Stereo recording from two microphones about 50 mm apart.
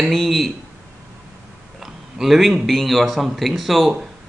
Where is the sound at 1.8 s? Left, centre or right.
Centre.